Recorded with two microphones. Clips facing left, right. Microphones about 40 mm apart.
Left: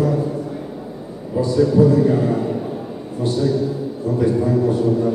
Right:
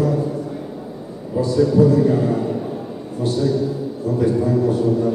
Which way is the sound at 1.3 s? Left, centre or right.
Centre.